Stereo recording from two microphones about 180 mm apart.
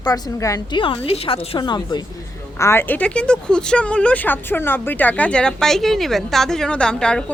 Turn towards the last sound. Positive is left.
turn(degrees=5)  # may be behind; listen again after turning